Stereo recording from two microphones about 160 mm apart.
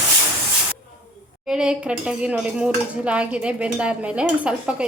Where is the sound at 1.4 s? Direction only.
5° right (ahead or behind).